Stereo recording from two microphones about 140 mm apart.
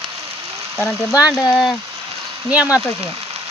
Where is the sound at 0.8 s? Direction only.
Centre (ahead or behind).